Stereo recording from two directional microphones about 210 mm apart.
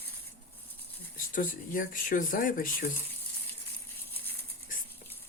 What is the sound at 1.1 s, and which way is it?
Speech, 40° left (ahead or behind).